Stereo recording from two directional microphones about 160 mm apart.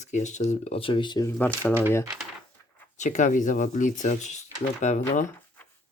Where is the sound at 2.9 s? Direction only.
50° left (ahead or behind).